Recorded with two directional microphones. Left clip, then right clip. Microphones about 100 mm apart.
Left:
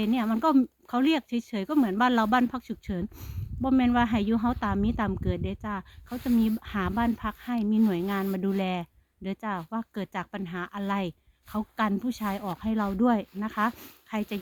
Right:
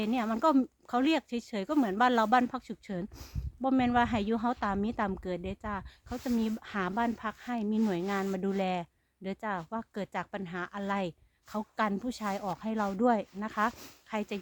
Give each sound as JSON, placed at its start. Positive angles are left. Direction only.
{"t": 0.0, "sound": "speech", "side_deg": -35}